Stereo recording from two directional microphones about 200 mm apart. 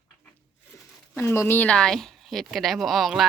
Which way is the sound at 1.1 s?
15° left (ahead or behind).